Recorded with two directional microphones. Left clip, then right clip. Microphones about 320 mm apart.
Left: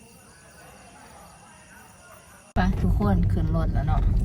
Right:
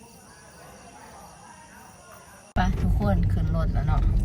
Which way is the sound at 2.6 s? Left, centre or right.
Centre.